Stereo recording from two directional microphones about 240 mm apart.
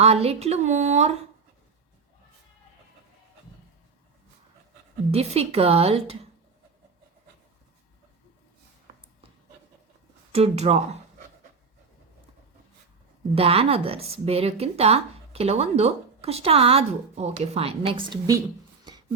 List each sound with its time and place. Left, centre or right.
0.0 s speech: right
5.1 s speech: right
10.3 s speech: right
13.3 s speech: right
18.9 s a sound: centre